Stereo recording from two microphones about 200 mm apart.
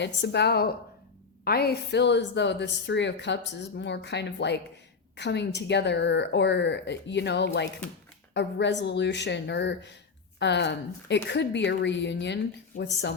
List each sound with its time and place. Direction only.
0.0 s a woman's voice: 60° left (ahead or behind)